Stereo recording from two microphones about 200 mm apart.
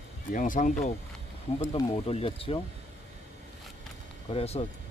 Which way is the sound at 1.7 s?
30° left (ahead or behind).